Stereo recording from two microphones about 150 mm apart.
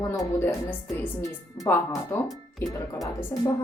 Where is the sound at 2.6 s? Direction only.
15° left (ahead or behind).